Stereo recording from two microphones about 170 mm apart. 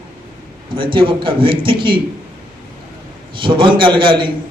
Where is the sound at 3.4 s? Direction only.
30° right (ahead or behind).